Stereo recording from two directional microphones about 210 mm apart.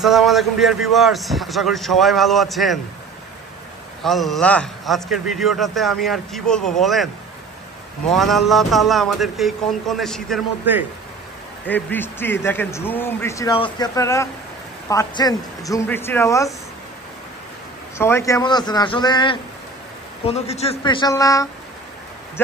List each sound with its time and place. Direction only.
0.0 s a man's voice: centre (ahead or behind)
4.0 s a man's voice: centre (ahead or behind)
8.1 s a man's voice: centre (ahead or behind)
10.6 s a man's voice: 10° right (ahead or behind)
11.6 s speech: 10° left (ahead or behind)
17.9 s a man's voice: 10° left (ahead or behind)